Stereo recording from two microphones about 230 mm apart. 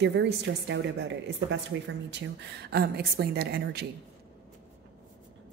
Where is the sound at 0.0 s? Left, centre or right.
Right.